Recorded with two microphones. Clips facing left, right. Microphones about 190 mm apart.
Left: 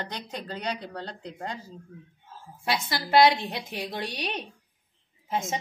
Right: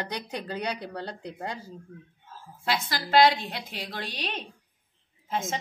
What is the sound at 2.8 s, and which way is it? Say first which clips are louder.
Speech: left 1 dB; 15° left (ahead or behind).